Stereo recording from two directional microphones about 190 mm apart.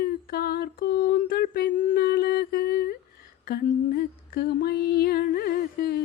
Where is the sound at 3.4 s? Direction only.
55° left (ahead or behind).